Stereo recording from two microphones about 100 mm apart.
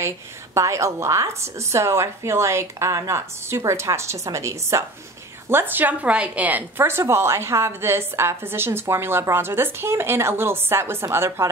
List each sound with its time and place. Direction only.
0.6 s a woman's voice: 30° right (ahead or behind)